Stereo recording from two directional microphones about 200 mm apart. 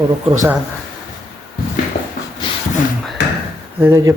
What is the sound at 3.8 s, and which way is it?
Speech, 15° right (ahead or behind).